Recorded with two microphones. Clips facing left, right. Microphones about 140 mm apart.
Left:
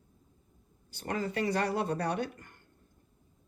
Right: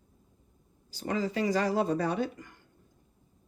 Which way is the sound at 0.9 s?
55° left (ahead or behind).